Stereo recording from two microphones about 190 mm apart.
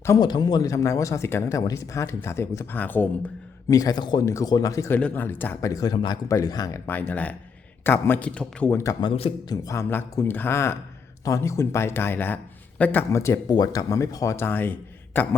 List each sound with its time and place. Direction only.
0.0 s speech: 20° left (ahead or behind)
3.8 s speech: 20° left (ahead or behind)
9.6 s speech: 15° left (ahead or behind)